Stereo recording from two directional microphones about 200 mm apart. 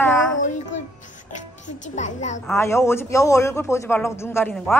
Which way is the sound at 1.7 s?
35° left (ahead or behind).